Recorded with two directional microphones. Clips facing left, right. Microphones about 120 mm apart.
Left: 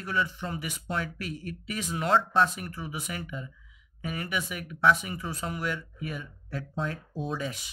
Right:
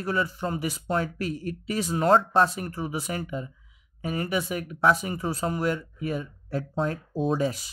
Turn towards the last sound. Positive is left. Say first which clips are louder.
# right 8 dB
turn(degrees=-35)  # may be behind; listen again after turning